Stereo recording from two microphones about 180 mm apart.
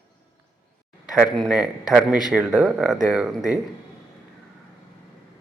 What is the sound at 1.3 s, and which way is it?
A man's voice, centre (ahead or behind).